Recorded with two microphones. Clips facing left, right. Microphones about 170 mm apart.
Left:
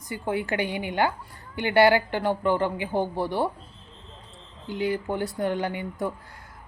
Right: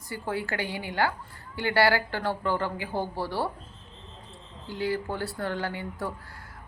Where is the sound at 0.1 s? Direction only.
20° left (ahead or behind).